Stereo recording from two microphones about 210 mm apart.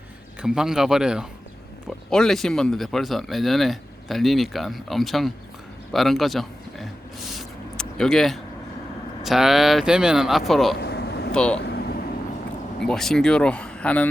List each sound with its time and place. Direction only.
0.4 s a man's voice: 5° right (ahead or behind)
7.3 s a sound: centre (ahead or behind)
9.2 s speech: centre (ahead or behind)
10.8 s vehicle: 50° left (ahead or behind)
11.3 s speech: 5° left (ahead or behind)
11.6 s vehicle: 50° left (ahead or behind)
12.8 s speech: 5° left (ahead or behind)